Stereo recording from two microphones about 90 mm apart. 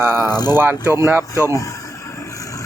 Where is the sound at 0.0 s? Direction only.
25° right (ahead or behind).